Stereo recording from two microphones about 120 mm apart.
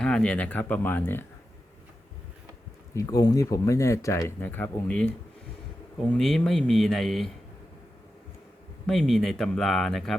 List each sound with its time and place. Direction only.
0.0 s speech: 10° left (ahead or behind)
2.9 s speech: 30° left (ahead or behind); by 7.3 s centre (ahead or behind)
8.9 s speech: centre (ahead or behind)